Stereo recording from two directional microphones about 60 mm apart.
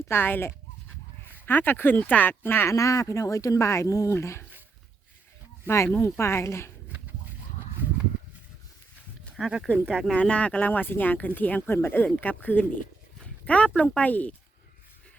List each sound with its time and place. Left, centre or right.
0.1 s speech: left
2.6 s speech: left
3.7 s speech: left
5.6 s speech: left
9.4 s speech: centre
9.7 s speech: right
10.2 s speech: centre
13.2 s a sound: left
13.7 s speech: left